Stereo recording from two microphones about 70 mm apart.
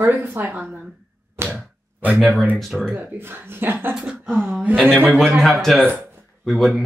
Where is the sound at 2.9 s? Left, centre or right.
Right.